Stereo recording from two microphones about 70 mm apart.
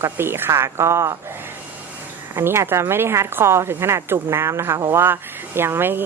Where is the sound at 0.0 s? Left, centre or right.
Right.